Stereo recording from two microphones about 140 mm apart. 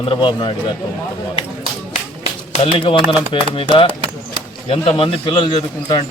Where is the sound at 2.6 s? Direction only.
40° left (ahead or behind).